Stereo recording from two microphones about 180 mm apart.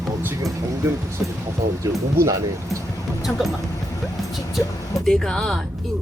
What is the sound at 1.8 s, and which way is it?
Speech, 15° right (ahead or behind).